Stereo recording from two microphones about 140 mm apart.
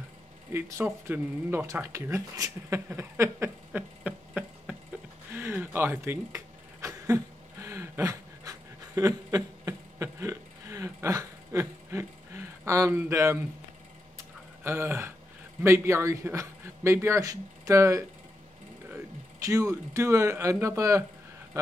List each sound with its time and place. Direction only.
0.5 s speech: 20° right (ahead or behind)
5.3 s a sound: 15° right (ahead or behind)
14.6 s a man's voice: 15° right (ahead or behind)
19.4 s a man's voice: 20° right (ahead or behind)